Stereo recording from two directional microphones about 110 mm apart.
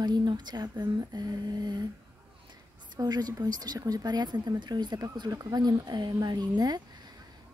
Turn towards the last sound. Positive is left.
turn(degrees=-40)  # may be behind; listen again after turning